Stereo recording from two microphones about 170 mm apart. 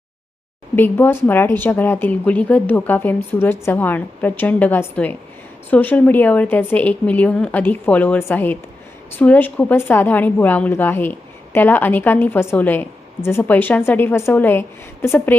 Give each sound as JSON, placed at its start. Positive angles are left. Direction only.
{"t": 0.8, "sound": "a woman's voice", "side_deg": 10}